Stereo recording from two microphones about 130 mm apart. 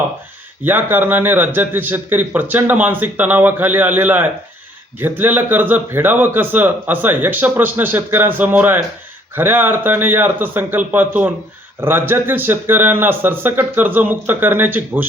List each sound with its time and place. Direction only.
0.6 s a man's voice: 15° right (ahead or behind)